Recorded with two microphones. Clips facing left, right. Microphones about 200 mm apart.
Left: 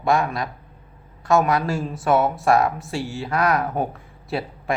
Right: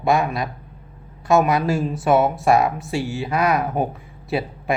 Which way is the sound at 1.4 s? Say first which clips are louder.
Right 2 dB; centre (ahead or behind).